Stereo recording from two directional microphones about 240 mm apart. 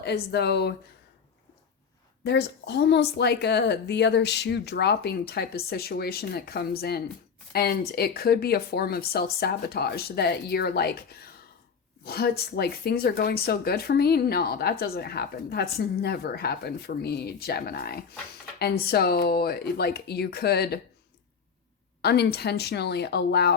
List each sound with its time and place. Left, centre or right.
0.0 s speech: left
2.2 s speech: left
22.0 s speech: left